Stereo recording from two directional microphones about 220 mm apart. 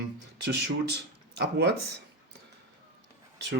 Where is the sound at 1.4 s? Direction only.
50° right (ahead or behind).